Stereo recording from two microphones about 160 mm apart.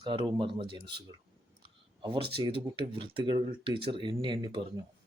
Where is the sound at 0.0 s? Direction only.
30° right (ahead or behind).